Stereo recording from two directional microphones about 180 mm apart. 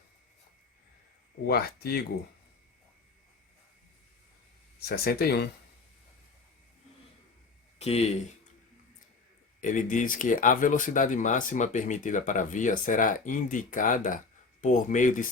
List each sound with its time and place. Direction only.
1.5 s speech: 60° left (ahead or behind)
4.8 s speech: 60° left (ahead or behind)
7.8 s speech: 35° left (ahead or behind)
9.6 s speech: 45° left (ahead or behind)